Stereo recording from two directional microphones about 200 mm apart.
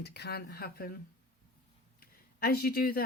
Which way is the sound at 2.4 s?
50° left (ahead or behind).